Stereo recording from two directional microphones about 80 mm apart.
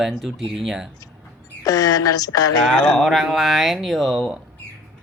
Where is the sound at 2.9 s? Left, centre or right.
Centre.